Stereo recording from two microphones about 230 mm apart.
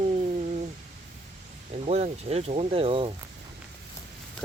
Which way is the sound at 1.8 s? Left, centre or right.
Right.